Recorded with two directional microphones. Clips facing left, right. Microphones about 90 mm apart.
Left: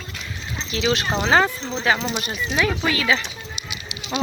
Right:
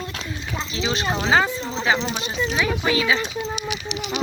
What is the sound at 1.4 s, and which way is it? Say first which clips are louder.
Speech: even; 20° right (ahead or behind).